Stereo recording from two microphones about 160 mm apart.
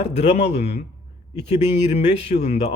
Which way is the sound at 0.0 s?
40° left (ahead or behind).